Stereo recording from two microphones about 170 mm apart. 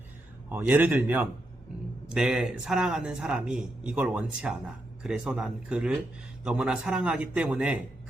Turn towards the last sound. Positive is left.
turn(degrees=-10)  # may be behind; listen again after turning